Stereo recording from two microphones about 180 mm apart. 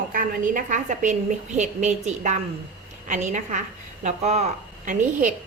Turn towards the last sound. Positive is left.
turn(degrees=-45)  # may be behind; listen again after turning